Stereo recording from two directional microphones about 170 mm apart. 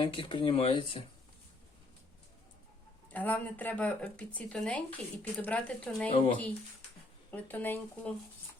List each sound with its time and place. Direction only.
0.0 s speech: 30° left (ahead or behind)
3.1 s speech: 10° left (ahead or behind)
6.1 s speech: 40° left (ahead or behind)
7.3 s speech: 10° left (ahead or behind)